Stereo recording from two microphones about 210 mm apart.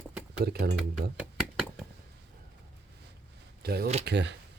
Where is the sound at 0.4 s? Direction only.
50° right (ahead or behind).